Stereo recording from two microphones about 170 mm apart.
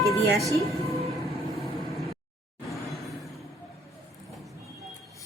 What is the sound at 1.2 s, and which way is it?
Vehicle, centre (ahead or behind).